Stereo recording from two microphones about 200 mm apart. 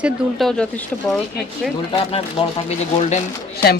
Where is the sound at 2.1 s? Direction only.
30° left (ahead or behind).